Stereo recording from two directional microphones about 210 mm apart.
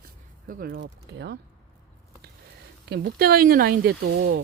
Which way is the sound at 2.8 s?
50° right (ahead or behind).